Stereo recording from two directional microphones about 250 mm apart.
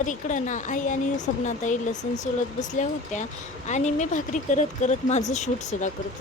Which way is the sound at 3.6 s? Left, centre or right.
Left.